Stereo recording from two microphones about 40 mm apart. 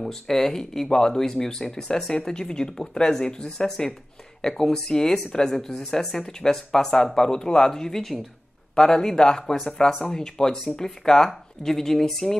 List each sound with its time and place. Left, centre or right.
0.0 s speech: centre